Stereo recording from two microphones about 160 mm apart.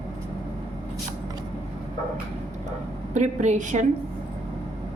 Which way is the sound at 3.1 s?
45° right (ahead or behind).